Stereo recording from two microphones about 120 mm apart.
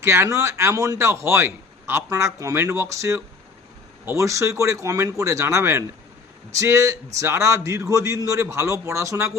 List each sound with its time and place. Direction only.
0.0 s a man's voice: 20° right (ahead or behind)